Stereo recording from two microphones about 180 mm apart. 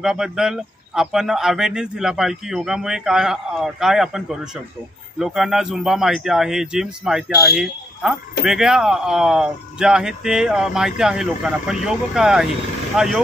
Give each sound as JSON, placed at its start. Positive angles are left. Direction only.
{"t": 0.0, "sound": "a man's voice", "side_deg": 0}